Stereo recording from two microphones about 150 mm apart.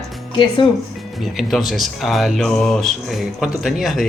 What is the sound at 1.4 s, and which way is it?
Speech, centre (ahead or behind).